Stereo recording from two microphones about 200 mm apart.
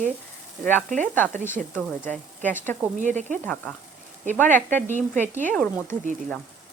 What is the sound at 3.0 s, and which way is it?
Sizzle, 40° right (ahead or behind).